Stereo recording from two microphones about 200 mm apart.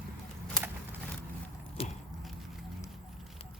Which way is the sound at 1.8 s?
30° left (ahead or behind).